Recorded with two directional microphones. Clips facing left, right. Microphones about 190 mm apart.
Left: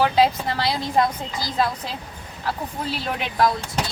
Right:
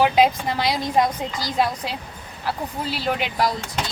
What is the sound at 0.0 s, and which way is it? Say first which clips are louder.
A woman's voice: right 1 dB; 15° right (ahead or behind).